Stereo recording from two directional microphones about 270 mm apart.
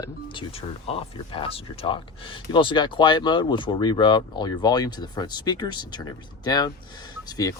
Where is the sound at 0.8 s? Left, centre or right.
Centre.